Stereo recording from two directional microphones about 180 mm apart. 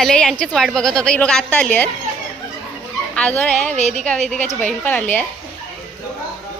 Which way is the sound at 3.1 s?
10° left (ahead or behind).